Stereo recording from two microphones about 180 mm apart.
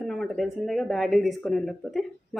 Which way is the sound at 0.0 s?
Centre (ahead or behind).